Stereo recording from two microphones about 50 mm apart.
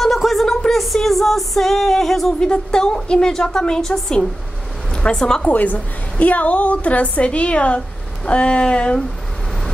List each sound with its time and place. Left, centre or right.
0.0 s a sound: centre
0.7 s music: centre
2.4 s a woman's voice: centre
5.5 s a woman's voice: left